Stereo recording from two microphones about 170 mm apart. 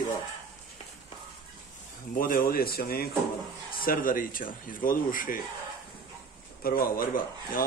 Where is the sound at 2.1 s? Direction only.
55° left (ahead or behind).